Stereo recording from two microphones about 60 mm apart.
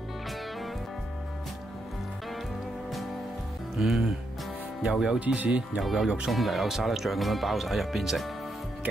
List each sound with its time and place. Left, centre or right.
3.7 s music: centre
5.2 s speech: right
5.8 s speech: centre
6.0 s music: centre
6.3 s speech: centre